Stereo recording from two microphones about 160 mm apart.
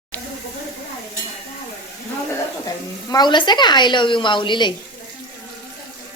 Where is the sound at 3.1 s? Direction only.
25° left (ahead or behind).